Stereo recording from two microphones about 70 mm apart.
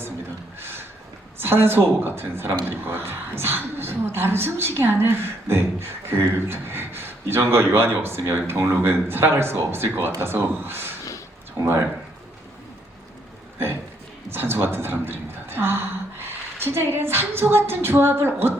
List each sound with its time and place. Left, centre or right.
0.6 s a sound: right
1.4 s a woman's voice: right
14.3 s a woman's voice: right